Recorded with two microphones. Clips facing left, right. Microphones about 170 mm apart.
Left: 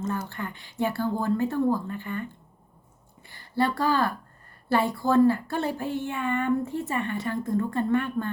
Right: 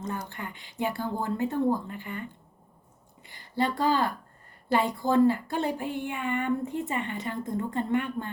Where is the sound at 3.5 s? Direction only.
20° right (ahead or behind).